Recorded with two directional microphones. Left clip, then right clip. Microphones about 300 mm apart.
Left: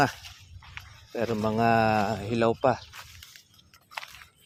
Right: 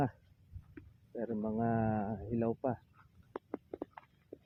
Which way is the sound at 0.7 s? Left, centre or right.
Left.